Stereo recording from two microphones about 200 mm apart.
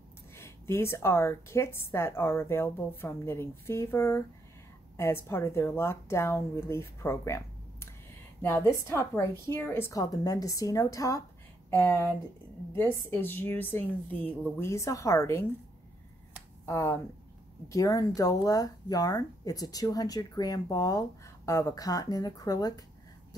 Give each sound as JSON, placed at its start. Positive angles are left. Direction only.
{"t": 0.4, "sound": "a woman's voice", "side_deg": 15}
{"t": 16.6, "sound": "a woman's voice", "side_deg": 15}